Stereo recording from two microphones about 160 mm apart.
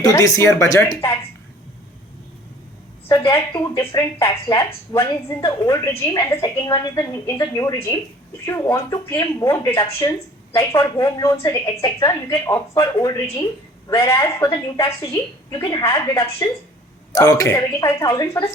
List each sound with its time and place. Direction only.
0.0 s a woman's voice: 20° left (ahead or behind)
3.1 s a woman's voice: 20° left (ahead or behind)
9.7 s speech: 30° left (ahead or behind)
10.1 s a woman's voice: 20° left (ahead or behind)